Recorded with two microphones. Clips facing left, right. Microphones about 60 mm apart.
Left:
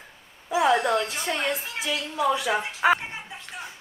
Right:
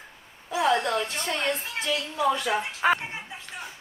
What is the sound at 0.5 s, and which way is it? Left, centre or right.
A woman's voice, centre.